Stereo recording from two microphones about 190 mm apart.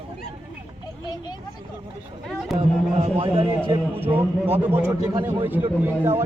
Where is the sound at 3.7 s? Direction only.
10° right (ahead or behind).